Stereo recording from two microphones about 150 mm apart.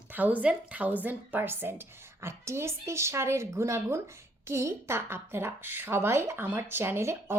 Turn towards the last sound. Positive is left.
turn(degrees=-15)  # may be behind; listen again after turning